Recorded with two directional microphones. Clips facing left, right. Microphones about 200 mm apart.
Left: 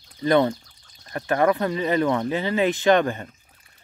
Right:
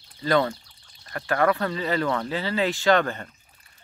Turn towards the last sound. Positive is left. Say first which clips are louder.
# left 2 dB
turn(degrees=15)  # may be behind; listen again after turning